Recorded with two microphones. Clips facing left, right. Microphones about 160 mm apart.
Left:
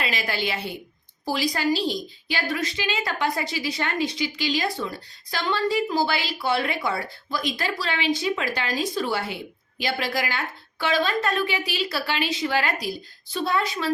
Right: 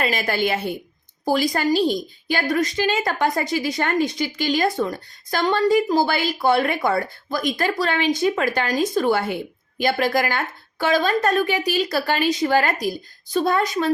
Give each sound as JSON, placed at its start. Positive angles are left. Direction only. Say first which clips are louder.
{"t": 0.0, "sound": "a woman's voice", "louder": "right 6 dB", "side_deg": -45}